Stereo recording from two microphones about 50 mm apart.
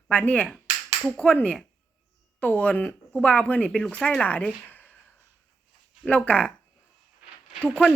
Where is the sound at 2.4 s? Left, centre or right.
Left.